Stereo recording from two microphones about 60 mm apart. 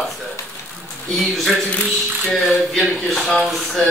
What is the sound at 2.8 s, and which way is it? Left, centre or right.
A man's voice, centre.